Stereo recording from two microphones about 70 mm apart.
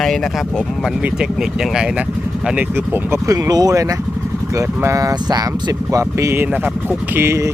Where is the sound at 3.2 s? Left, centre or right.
Right.